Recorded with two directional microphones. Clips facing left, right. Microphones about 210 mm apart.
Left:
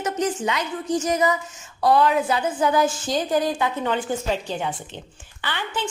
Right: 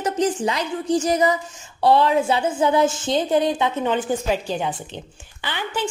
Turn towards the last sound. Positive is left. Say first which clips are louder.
# right 2 dB
turn(degrees=-15)  # may be behind; listen again after turning